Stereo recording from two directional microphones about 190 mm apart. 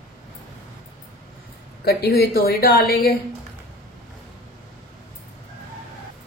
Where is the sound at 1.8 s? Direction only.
55° left (ahead or behind).